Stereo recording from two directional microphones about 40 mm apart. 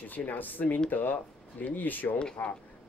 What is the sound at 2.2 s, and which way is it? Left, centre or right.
Speech, left.